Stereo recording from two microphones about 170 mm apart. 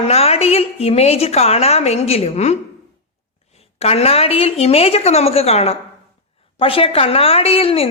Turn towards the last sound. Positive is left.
turn(degrees=35)  # may be behind; listen again after turning